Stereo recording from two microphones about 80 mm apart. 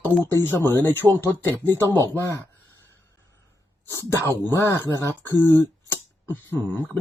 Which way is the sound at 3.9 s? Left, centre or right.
Left.